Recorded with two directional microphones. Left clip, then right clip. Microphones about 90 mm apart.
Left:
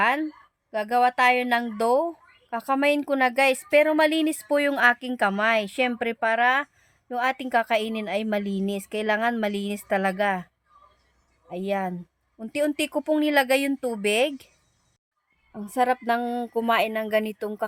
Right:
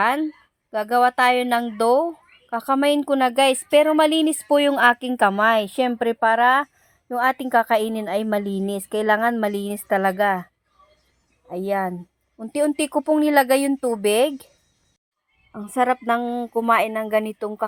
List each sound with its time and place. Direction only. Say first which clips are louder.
0.7 s a woman's voice: right 3 dB; 45° right (ahead or behind)
15.6 s a woman's voice: right 3 dB; 5° right (ahead or behind)
16.2 s speech: right 2 dB; 5° left (ahead or behind)
16.6 s a woman's voice: right 4 dB; 5° right (ahead or behind)